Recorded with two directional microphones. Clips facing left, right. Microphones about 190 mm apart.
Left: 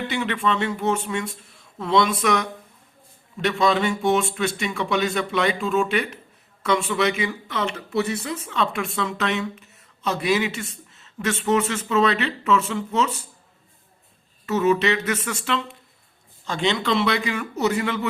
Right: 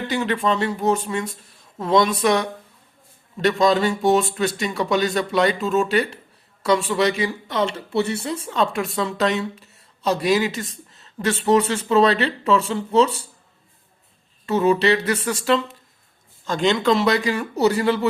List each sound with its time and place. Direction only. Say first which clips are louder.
0.1 s speech: right 4 dB; 35° right (ahead or behind)
14.4 s speech: right 2 dB; 30° right (ahead or behind)